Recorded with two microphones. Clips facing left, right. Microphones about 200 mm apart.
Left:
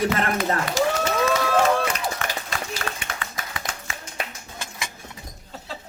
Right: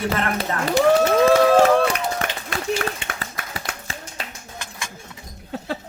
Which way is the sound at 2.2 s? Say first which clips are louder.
Right 2 dB; 60° right (ahead or behind).